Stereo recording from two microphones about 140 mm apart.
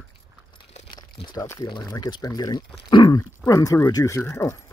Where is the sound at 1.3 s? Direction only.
20° left (ahead or behind).